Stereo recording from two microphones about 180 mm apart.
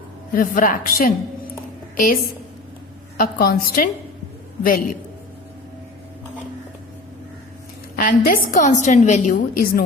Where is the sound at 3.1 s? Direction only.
55° left (ahead or behind).